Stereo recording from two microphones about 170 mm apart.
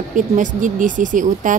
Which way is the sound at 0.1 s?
50° right (ahead or behind).